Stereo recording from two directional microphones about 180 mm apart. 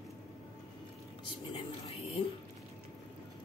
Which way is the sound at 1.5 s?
30° left (ahead or behind).